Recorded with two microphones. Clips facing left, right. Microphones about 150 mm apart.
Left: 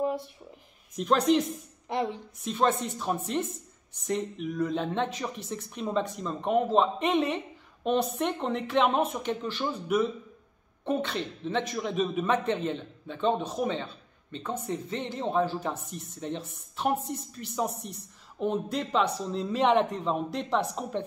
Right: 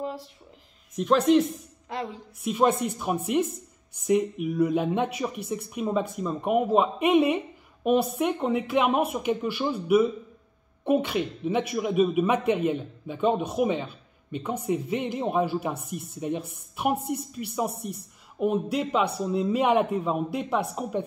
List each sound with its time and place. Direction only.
0.9 s speech: centre (ahead or behind)
1.9 s music: 20° left (ahead or behind)
2.4 s speech: 10° right (ahead or behind)